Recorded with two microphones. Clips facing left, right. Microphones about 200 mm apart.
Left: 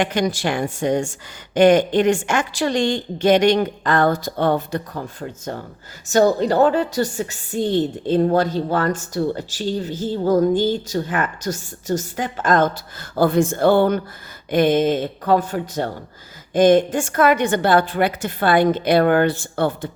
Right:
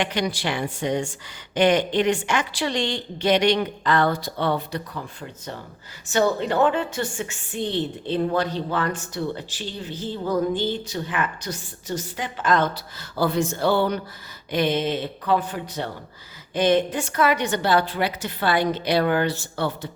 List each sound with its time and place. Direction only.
0.0 s a woman's voice: 45° left (ahead or behind)